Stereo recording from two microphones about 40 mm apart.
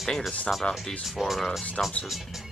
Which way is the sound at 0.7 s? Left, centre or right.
Left.